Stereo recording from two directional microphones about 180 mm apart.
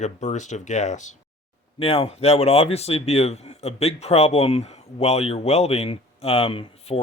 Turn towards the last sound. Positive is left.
turn(degrees=30)  # may be behind; listen again after turning